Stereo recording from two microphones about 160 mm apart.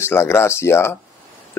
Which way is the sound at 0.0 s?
15° left (ahead or behind).